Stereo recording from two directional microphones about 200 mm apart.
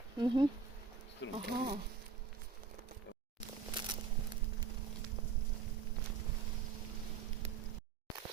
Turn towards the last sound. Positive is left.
turn(degrees=-30)  # may be behind; listen again after turning